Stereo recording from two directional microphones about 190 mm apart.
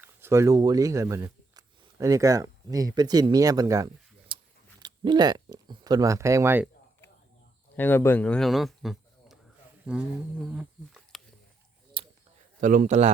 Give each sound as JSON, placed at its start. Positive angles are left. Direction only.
{"t": 0.0, "sound": "speech", "side_deg": -10}
{"t": 4.3, "sound": "a sound", "side_deg": -25}
{"t": 4.8, "sound": "speech", "side_deg": -20}
{"t": 7.8, "sound": "speech", "side_deg": 10}
{"t": 12.0, "sound": "a sound", "side_deg": -25}
{"t": 12.5, "sound": "a man's voice", "side_deg": -45}